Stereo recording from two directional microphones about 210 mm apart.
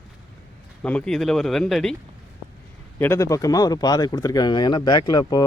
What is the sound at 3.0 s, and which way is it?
Speech, 10° left (ahead or behind).